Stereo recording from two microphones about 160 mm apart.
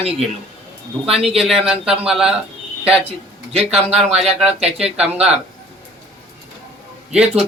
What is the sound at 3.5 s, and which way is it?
Speech, 40° right (ahead or behind).